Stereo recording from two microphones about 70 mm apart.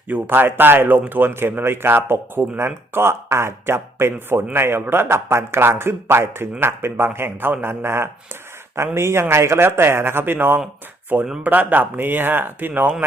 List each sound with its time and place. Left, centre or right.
0.1 s speech: right